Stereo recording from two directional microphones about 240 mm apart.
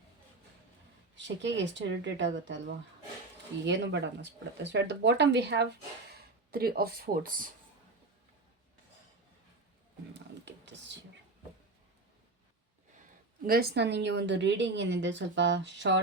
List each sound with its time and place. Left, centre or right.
1.1 s a woman's voice: right
3.7 s a woman's voice: right
10.2 s computer keyboard: right
13.4 s a woman's voice: right